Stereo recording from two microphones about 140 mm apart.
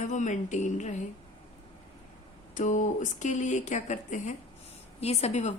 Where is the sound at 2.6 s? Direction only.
65° left (ahead or behind).